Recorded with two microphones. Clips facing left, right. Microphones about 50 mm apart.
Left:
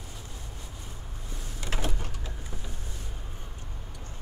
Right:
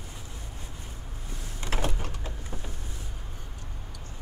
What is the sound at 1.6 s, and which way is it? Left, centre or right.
Power windows, right.